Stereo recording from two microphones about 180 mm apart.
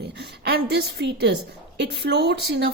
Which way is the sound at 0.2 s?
60° right (ahead or behind).